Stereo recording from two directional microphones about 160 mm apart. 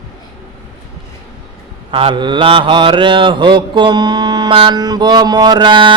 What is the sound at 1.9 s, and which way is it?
Mantra, 30° right (ahead or behind).